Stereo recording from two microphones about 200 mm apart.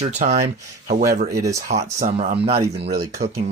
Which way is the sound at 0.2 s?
35° right (ahead or behind).